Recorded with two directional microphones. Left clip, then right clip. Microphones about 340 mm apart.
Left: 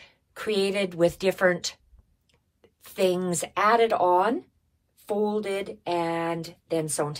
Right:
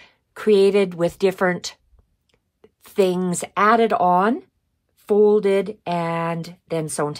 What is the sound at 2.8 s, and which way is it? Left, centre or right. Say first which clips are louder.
Speech: right 5 dB; right.